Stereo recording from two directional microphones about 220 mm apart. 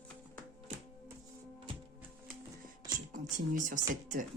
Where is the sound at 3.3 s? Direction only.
35° right (ahead or behind).